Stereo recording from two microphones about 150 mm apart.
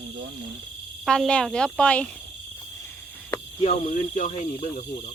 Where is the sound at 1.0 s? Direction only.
5° left (ahead or behind).